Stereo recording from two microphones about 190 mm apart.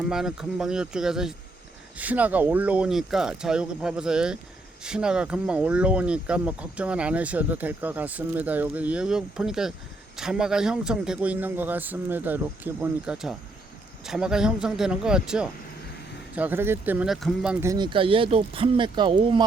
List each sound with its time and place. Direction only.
0.1 s speech: 5° right (ahead or behind)
17.7 s speech: 25° right (ahead or behind)